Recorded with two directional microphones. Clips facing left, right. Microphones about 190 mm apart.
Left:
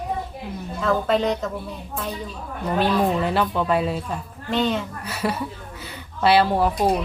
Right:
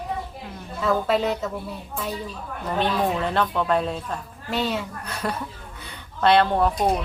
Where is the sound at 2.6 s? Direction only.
5° left (ahead or behind).